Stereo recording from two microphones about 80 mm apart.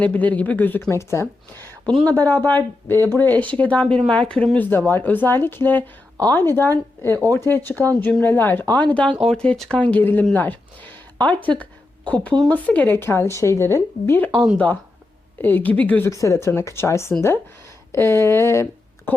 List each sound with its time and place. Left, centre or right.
0.0 s speech: centre
0.9 s speech: left
14.3 s speech: centre
15.4 s speech: left
16.0 s speech: left